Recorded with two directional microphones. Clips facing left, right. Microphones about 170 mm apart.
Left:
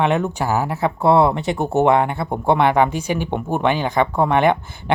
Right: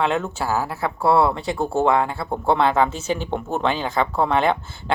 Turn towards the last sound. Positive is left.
turn(degrees=15)  # may be behind; listen again after turning